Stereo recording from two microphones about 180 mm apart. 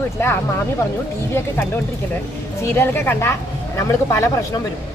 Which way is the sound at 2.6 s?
15° left (ahead or behind).